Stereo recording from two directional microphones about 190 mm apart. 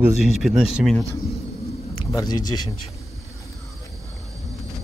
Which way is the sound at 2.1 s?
20° left (ahead or behind).